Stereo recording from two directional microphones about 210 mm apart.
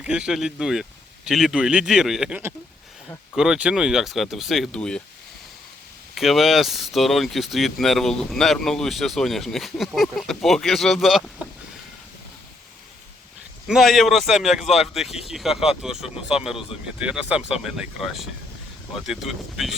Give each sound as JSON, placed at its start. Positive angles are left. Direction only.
{"t": 0.0, "sound": "speech", "side_deg": -5}
{"t": 6.1, "sound": "speech", "side_deg": 0}
{"t": 13.7, "sound": "speech", "side_deg": 0}